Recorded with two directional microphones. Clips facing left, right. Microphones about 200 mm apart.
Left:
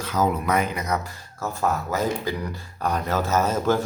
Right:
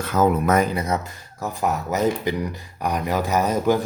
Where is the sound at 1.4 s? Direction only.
15° right (ahead or behind).